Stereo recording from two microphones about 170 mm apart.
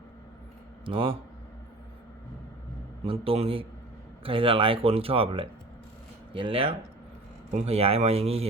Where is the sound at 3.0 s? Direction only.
35° right (ahead or behind).